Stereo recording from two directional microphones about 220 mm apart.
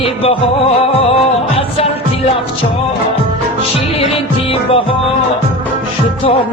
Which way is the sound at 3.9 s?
25° left (ahead or behind).